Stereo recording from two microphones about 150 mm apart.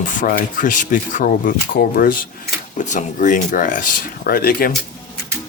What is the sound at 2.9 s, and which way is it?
Speech, 60° left (ahead or behind).